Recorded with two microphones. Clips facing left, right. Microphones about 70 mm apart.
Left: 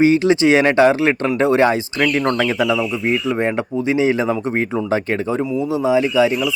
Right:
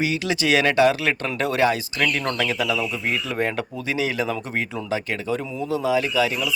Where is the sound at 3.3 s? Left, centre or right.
Left.